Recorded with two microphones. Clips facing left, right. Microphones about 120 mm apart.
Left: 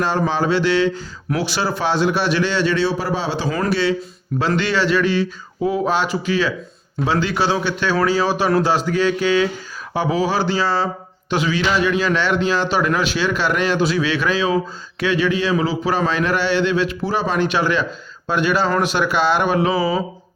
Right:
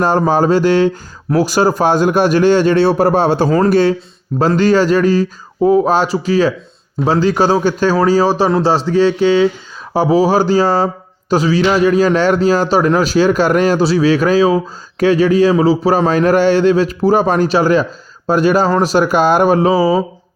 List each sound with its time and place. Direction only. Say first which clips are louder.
0.0 s a man's voice: right 7 dB; 45° right (ahead or behind)